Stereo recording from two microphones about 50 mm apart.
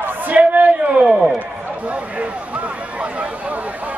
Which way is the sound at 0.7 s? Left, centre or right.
Centre.